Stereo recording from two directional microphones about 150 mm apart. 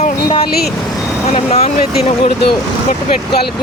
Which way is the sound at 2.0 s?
90° left.